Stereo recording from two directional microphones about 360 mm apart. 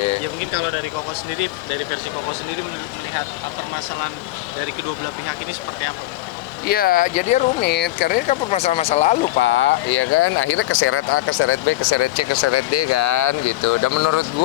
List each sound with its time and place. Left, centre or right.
6.7 s speech: left
9.4 s speech: left